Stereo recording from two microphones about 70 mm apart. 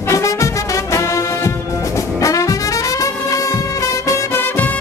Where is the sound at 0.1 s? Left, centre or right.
Left.